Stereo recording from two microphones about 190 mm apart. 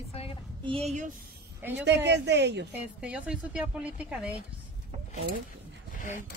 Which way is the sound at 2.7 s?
5° right (ahead or behind).